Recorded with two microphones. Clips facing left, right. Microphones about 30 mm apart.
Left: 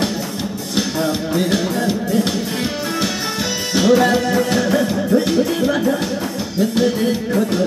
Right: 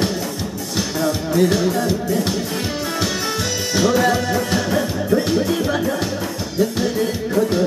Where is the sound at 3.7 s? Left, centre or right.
Centre.